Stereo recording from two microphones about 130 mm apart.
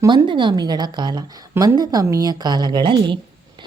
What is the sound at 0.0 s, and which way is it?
A woman's voice, 35° right (ahead or behind).